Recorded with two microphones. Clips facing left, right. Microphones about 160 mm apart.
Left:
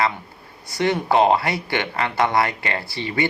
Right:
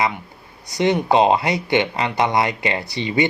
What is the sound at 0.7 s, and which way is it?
A man's voice, 20° right (ahead or behind).